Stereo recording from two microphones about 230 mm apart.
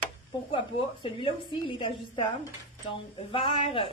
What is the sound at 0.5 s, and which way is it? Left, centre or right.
A woman's voice, left.